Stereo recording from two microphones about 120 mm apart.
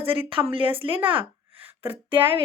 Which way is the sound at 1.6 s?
15° right (ahead or behind).